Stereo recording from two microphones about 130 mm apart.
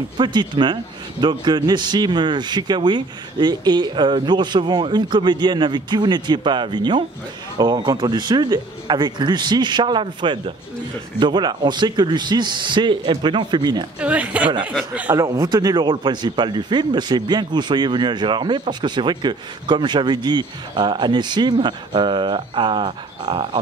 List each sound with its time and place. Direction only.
0.2 s speech: 35° right (ahead or behind)
13.9 s speech: 10° right (ahead or behind)
15.1 s speech: 30° right (ahead or behind)